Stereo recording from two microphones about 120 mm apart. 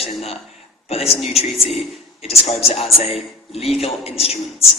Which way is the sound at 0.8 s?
60° left (ahead or behind).